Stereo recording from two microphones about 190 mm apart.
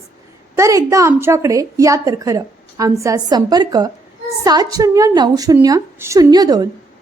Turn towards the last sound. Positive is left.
turn(degrees=-20)  # may be behind; listen again after turning